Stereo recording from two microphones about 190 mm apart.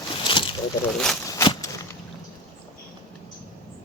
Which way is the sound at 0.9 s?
Centre (ahead or behind).